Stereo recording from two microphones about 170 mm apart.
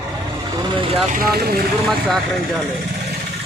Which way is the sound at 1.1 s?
65° right (ahead or behind).